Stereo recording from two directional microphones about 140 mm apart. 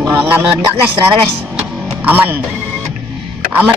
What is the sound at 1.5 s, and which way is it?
Music, 10° right (ahead or behind).